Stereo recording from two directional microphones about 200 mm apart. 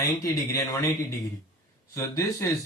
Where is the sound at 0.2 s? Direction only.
15° left (ahead or behind).